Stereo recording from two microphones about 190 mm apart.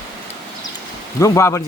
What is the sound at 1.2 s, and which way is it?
Speech, 15° left (ahead or behind).